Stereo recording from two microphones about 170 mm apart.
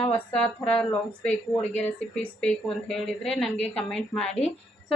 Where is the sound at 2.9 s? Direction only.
5° left (ahead or behind).